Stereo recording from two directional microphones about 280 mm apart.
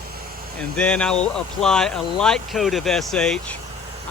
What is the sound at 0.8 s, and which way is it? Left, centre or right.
Speech, centre.